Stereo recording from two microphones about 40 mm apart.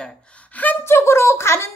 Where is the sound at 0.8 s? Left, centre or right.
Left.